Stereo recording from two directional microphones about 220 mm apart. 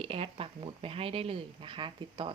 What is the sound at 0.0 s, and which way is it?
Speech, 25° right (ahead or behind).